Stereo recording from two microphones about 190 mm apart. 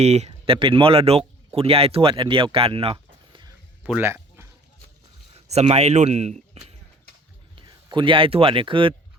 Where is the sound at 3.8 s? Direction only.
10° right (ahead or behind).